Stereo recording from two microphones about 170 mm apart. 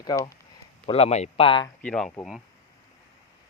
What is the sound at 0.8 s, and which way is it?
Speech, 35° left (ahead or behind).